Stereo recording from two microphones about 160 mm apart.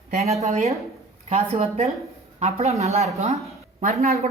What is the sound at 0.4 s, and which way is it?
A woman's voice, 45° right (ahead or behind).